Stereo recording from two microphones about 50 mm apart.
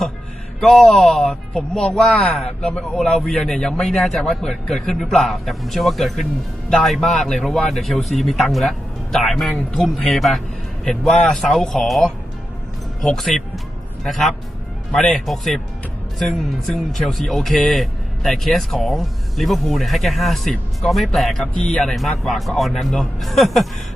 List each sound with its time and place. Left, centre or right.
0.6 s speech: centre
13.1 s speech: centre
21.6 s speech: centre
21.8 s speech: centre